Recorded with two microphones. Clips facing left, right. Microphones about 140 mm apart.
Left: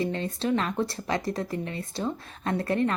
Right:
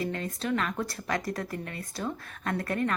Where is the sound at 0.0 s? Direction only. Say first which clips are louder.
Left 4 dB; 25° left (ahead or behind).